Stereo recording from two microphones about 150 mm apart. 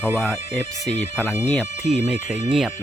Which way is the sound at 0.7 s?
50° left (ahead or behind).